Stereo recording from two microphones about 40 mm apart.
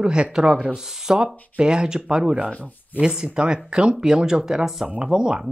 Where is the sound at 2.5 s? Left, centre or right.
Left.